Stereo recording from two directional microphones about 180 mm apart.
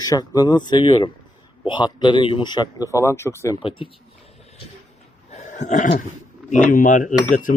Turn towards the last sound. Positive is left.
turn(degrees=50)  # may be behind; listen again after turning